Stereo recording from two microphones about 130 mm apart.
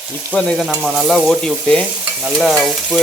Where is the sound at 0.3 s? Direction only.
5° left (ahead or behind).